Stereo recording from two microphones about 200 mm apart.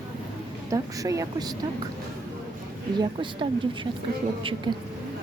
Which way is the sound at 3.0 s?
25° right (ahead or behind).